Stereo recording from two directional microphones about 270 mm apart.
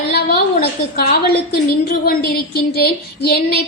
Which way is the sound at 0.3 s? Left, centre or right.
Left.